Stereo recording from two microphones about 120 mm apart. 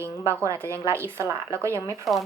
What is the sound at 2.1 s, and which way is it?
Speech, centre (ahead or behind).